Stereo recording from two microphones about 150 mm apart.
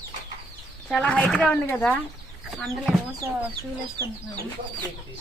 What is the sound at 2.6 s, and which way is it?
Speech, centre (ahead or behind).